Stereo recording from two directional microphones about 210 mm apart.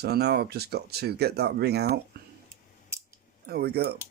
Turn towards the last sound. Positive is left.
turn(degrees=-50)  # may be behind; listen again after turning